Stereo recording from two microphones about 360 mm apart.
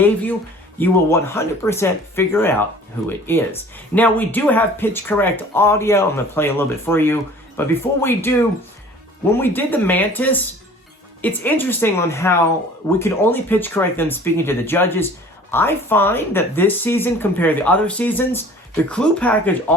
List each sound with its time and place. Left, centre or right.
0.8 s speech: centre
9.4 s speech: centre